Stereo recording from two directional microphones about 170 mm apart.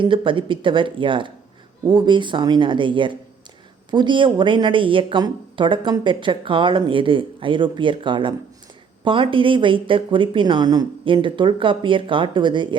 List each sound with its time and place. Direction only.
0.0 s speech: 30° right (ahead or behind)